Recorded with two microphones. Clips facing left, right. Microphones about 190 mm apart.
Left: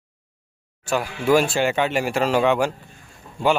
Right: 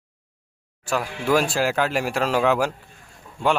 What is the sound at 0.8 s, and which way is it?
Speech, centre (ahead or behind).